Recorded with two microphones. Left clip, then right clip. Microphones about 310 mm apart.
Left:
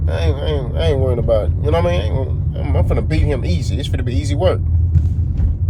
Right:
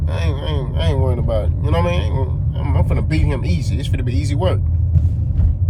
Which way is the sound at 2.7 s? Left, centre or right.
Centre.